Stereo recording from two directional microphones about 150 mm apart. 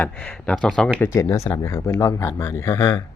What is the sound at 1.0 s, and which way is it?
Speech, 20° left (ahead or behind).